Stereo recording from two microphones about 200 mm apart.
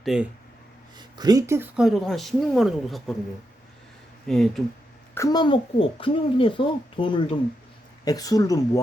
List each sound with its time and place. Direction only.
0.0 s speech: centre (ahead or behind)
0.9 s speech: 20° right (ahead or behind); by 3.0 s centre (ahead or behind)
4.3 s speech: centre (ahead or behind)
5.1 s a woman's voice: 15° left (ahead or behind)